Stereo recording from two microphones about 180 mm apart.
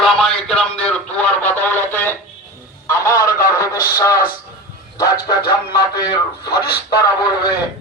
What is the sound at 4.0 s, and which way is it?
Music, 20° left (ahead or behind).